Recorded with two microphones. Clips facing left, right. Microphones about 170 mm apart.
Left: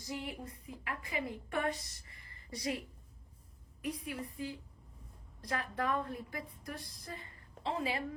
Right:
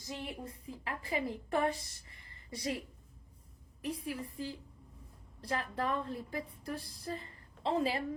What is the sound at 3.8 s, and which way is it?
Speech, 30° right (ahead or behind).